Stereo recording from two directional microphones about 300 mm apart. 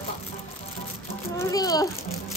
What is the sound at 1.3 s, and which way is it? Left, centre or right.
Speech, centre.